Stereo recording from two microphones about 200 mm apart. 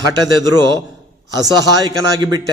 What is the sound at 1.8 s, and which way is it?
Speech, 20° right (ahead or behind).